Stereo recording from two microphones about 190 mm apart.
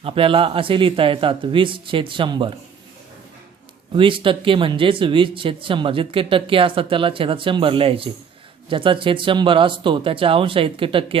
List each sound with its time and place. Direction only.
0.0 s speech: 30° right (ahead or behind)
3.9 s speech: 25° right (ahead or behind)